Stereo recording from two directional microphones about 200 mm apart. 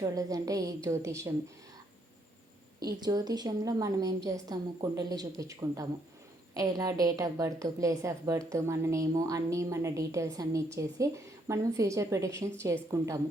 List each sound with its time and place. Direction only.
0.0 s a woman's voice: 15° right (ahead or behind)
2.8 s a woman's voice: 20° right (ahead or behind)